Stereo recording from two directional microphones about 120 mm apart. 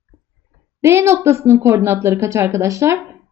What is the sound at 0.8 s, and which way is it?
A woman's voice, 20° right (ahead or behind).